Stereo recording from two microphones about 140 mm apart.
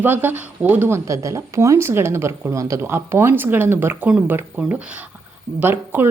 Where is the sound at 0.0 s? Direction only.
15° right (ahead or behind).